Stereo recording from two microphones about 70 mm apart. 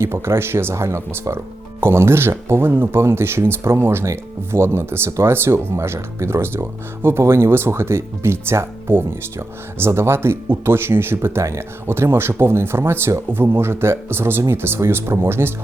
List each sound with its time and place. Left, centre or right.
0.0 s speech: right